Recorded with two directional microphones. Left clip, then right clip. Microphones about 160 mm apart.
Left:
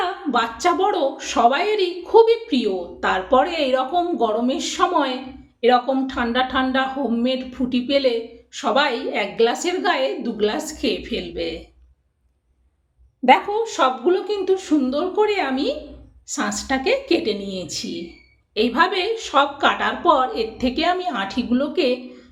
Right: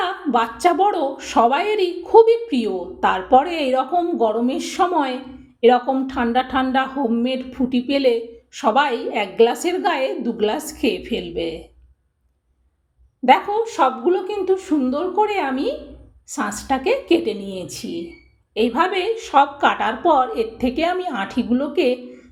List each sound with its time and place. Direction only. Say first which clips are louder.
0.3 s a woman's voice: right 2 dB; 30° right (ahead or behind)
13.2 s speech: even; centre (ahead or behind)
13.6 s a woman's voice: right 1 dB; 15° right (ahead or behind)